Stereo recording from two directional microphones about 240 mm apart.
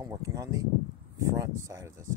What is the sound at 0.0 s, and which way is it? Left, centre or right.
Speech, centre.